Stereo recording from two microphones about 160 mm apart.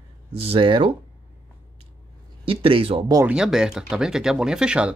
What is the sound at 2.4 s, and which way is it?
Speech, 35° right (ahead or behind).